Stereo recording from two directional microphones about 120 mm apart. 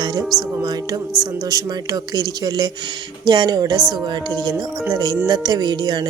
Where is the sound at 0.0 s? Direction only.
35° right (ahead or behind).